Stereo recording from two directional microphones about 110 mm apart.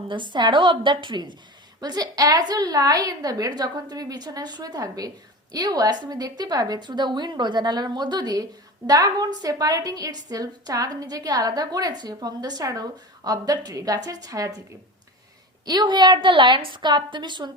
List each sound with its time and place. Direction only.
0.1 s a woman's voice: 45° right (ahead or behind)
15.6 s a woman's voice: 40° right (ahead or behind)